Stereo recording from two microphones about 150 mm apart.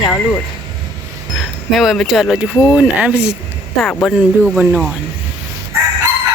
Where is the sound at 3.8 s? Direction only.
5° left (ahead or behind).